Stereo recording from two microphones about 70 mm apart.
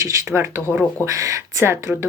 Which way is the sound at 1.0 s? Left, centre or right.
Right.